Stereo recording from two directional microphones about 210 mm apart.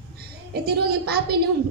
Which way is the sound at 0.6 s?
50° right (ahead or behind).